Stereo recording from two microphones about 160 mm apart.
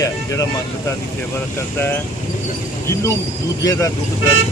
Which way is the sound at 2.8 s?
20° left (ahead or behind).